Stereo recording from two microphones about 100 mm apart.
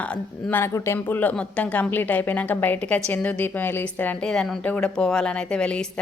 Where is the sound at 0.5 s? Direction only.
25° left (ahead or behind).